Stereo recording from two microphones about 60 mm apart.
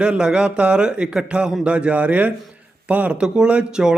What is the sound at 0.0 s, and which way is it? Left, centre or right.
Speech, centre.